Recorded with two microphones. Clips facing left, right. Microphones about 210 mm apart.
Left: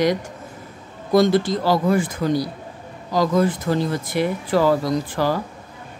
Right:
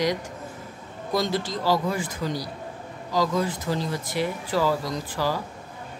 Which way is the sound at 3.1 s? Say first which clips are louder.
Left 6 dB; 55° left (ahead or behind).